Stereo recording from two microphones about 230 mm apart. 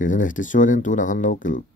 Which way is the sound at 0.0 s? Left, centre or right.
Left.